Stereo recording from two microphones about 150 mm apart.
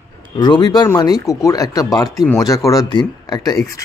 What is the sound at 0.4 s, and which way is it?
Speech, 30° left (ahead or behind).